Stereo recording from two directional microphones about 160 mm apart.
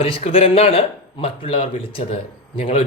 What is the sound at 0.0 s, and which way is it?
Speech, 35° left (ahead or behind).